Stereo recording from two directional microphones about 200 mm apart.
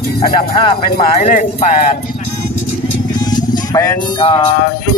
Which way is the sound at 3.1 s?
20° left (ahead or behind).